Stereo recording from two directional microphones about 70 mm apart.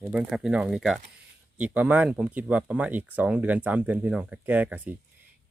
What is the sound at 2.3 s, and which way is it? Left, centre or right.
Speech, right.